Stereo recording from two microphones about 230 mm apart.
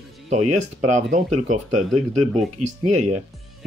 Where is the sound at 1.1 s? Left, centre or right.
Right.